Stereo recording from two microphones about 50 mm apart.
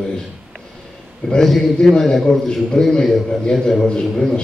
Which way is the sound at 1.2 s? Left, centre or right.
Centre.